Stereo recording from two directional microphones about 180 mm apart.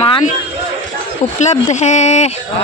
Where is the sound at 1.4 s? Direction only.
40° left (ahead or behind).